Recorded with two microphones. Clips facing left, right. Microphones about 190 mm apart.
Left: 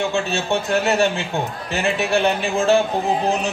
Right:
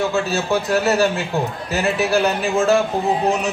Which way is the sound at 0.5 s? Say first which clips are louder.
Right 1 dB; 30° left (ahead or behind).